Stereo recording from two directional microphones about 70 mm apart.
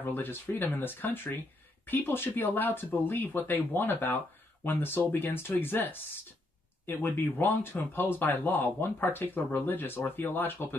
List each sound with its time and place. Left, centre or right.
0.0 s speech: left